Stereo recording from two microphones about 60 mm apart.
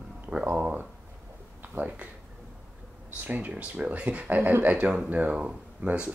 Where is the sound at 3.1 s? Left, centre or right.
Right.